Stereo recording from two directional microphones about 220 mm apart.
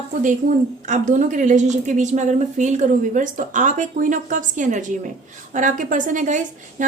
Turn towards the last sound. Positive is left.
turn(degrees=-35)  # may be behind; listen again after turning